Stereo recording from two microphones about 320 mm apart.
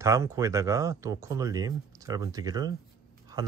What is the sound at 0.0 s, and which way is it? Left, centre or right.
Speech, centre.